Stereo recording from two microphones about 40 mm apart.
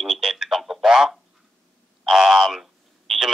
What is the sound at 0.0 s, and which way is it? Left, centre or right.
Telephone, centre.